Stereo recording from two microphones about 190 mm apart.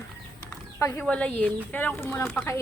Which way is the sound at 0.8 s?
15° left (ahead or behind).